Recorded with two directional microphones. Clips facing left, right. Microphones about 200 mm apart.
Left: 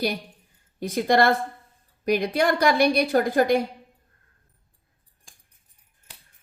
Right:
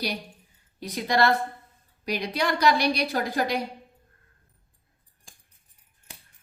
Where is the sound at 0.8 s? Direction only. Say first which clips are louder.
Left 4 dB; 50° left (ahead or behind).